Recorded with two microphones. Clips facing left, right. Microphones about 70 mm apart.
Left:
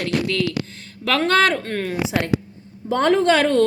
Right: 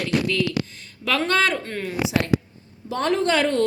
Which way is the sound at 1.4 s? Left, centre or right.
Left.